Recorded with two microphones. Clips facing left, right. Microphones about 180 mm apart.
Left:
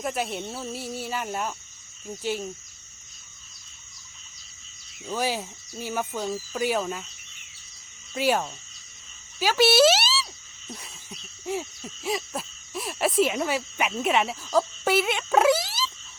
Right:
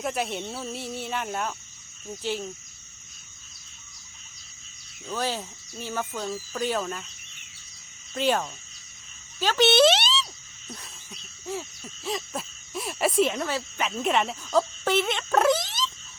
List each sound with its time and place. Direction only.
0.0 s speech: centre (ahead or behind)
5.0 s speech: 10° left (ahead or behind)
8.1 s speech: 5° left (ahead or behind)
10.7 s owl: 5° left (ahead or behind)